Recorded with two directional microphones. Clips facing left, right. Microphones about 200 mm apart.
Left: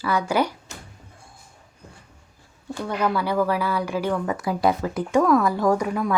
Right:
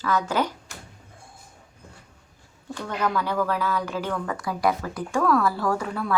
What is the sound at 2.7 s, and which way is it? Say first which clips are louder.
A woman's voice: left 3 dB; 10° left (ahead or behind).